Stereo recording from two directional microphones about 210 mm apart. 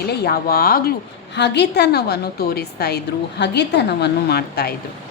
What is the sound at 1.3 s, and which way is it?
Speech, 55° left (ahead or behind).